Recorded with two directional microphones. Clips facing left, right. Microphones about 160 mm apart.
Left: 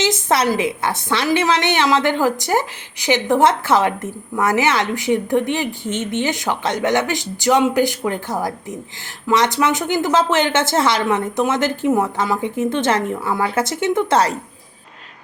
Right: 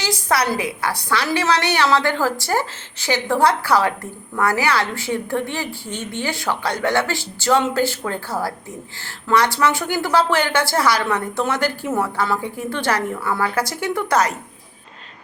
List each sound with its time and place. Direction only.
0.0 s a woman's voice: 20° left (ahead or behind)